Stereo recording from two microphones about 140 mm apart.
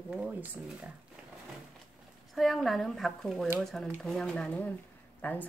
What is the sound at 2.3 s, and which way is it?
Speech, centre (ahead or behind).